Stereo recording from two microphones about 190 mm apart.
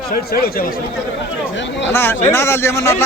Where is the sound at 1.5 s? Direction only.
70° left (ahead or behind).